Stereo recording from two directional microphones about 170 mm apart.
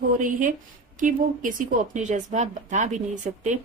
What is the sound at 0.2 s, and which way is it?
Speech, 50° right (ahead or behind).